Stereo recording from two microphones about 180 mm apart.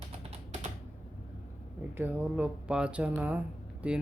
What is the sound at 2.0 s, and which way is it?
Speech, 10° right (ahead or behind).